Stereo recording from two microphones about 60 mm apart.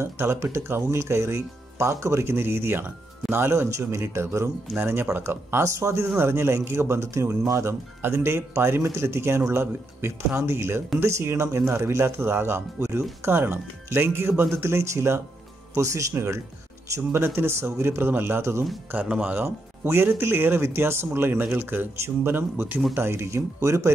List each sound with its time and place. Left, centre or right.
0.0 s speech: right
4.7 s speech: right
6.0 s speech: right
15.7 s speech: right
19.0 s speech: centre
19.3 s speech: right